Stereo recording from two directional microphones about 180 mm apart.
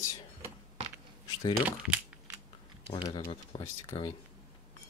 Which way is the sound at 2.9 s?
30° left (ahead or behind).